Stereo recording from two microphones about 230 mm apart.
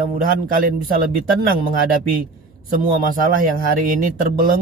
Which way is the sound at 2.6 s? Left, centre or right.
Right.